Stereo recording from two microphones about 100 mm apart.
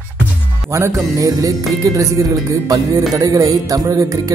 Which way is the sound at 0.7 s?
30° right (ahead or behind).